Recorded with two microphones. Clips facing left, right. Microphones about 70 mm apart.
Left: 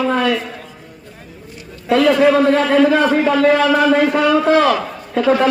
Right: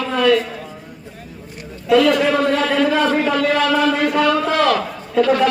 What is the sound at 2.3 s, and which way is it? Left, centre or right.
A man's voice, centre.